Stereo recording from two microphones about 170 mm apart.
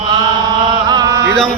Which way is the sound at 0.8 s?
20° right (ahead or behind).